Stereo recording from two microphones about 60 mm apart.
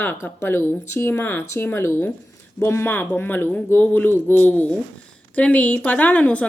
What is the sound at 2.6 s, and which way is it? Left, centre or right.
A woman's voice, left.